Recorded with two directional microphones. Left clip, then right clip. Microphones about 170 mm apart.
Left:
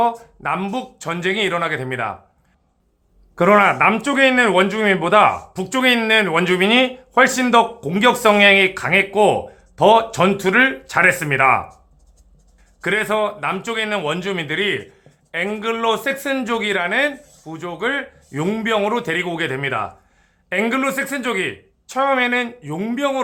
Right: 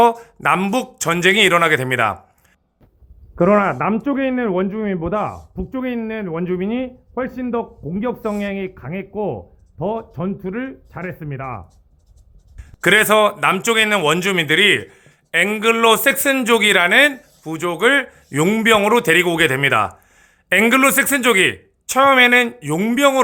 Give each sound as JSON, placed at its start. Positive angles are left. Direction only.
{"t": 0.0, "sound": "speech", "side_deg": -35}
{"t": 3.3, "sound": "a man's voice", "side_deg": -10}
{"t": 12.8, "sound": "speech", "side_deg": -40}